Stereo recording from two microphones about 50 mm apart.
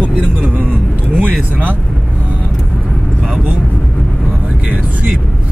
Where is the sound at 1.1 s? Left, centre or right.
Right.